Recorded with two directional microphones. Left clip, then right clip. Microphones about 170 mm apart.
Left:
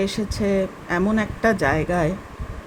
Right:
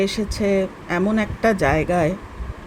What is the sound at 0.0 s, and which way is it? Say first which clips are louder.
Speech: right 2 dB; 10° right (ahead or behind).